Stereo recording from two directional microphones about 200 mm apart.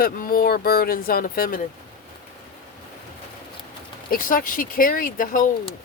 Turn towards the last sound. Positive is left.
turn(degrees=45)  # may be behind; listen again after turning